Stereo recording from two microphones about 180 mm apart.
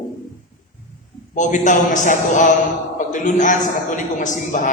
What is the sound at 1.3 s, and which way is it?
A man's voice, 45° left (ahead or behind).